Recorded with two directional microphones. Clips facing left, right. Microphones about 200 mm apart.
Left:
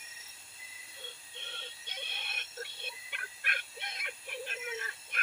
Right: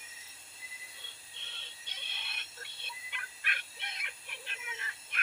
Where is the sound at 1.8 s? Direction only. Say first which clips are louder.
Left 4 dB; 50° left (ahead or behind).